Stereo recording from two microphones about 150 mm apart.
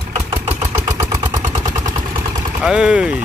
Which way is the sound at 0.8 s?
20° right (ahead or behind).